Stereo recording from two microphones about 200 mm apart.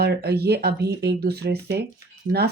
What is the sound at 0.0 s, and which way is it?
Speech, 55° right (ahead or behind).